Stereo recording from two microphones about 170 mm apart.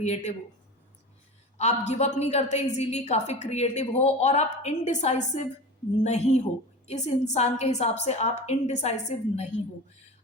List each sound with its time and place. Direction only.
0.0 s a woman's voice: 40° left (ahead or behind)
1.5 s a woman's voice: 40° left (ahead or behind)